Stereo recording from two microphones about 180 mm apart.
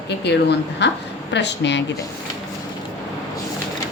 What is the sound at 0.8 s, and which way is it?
Speech, 75° left (ahead or behind).